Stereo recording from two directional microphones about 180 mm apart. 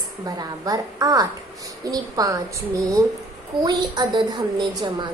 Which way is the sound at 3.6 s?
25° right (ahead or behind).